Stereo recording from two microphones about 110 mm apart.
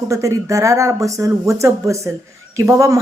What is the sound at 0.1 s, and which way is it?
Speech, 30° right (ahead or behind).